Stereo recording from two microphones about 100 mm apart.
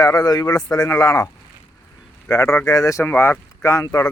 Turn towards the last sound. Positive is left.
turn(degrees=30)  # may be behind; listen again after turning